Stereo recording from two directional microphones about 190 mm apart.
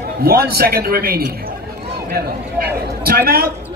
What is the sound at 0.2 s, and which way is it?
A man's voice, 55° right (ahead or behind).